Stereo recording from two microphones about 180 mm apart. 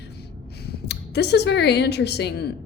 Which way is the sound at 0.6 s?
65° left (ahead or behind).